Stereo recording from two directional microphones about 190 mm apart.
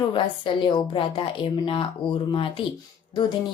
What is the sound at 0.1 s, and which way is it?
Speech, 25° left (ahead or behind).